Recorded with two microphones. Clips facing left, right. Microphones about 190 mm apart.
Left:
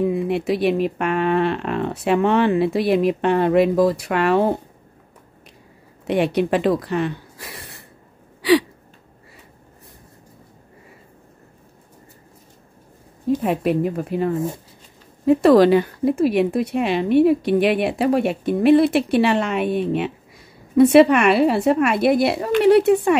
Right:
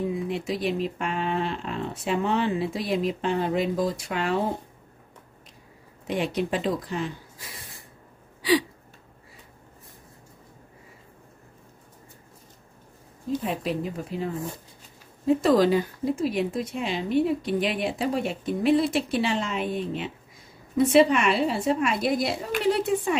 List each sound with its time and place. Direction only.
0.0 s a woman's voice: 65° left (ahead or behind)
6.0 s speech: 65° left (ahead or behind)
8.4 s a sound: 70° left (ahead or behind)
13.4 s a woman's voice: 60° left (ahead or behind)
15.2 s a woman's voice: 70° left (ahead or behind)